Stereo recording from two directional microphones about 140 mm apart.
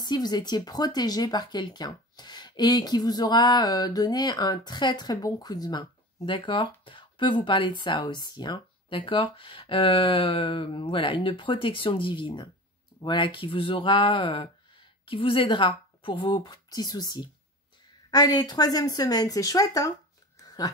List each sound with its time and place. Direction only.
0.0 s speech: 30° left (ahead or behind)